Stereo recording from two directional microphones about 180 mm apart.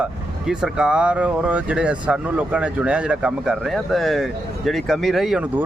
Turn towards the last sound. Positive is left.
turn(degrees=0)  # may be behind; listen again after turning